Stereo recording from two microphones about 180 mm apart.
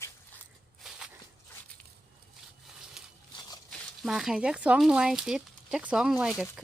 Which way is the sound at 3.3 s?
20° left (ahead or behind).